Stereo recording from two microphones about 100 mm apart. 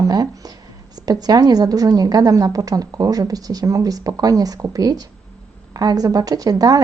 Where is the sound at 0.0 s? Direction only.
40° right (ahead or behind).